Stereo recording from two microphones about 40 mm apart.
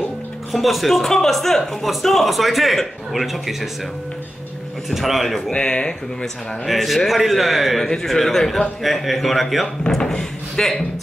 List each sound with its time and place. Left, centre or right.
0.5 s a man's voice: centre
4.9 s a man's voice: centre
5.5 s speech: left
6.6 s a man's voice: centre
7.8 s a man's voice: centre